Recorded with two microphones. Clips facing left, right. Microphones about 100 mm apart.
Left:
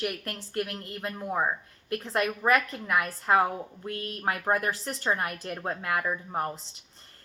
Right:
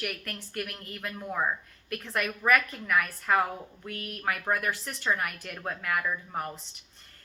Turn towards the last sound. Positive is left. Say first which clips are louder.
# left 2 dB
turn(degrees=25)  # may be behind; listen again after turning